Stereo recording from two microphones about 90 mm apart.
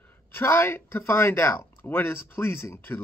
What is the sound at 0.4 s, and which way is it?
Speech, 25° left (ahead or behind).